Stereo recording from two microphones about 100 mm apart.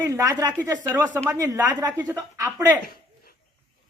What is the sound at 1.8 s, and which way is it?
Speech, 35° right (ahead or behind).